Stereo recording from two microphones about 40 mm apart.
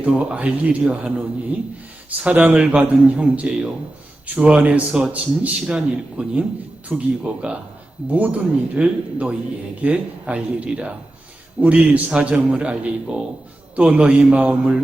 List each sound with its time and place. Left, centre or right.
0.0 s a man's voice: right
5.5 s a man's voice: right